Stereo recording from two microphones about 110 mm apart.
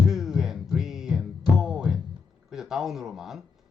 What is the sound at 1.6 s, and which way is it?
Music, 5° right (ahead or behind).